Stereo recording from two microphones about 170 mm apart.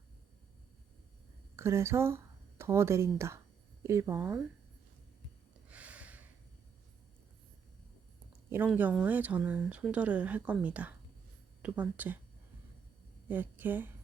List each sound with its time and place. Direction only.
1.5 s speech: 15° right (ahead or behind)
5.6 s a sound: 10° right (ahead or behind)
8.4 s speech: 10° right (ahead or behind)
13.2 s speech: 10° right (ahead or behind)